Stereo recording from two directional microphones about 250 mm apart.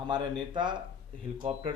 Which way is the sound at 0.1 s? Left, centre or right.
Centre.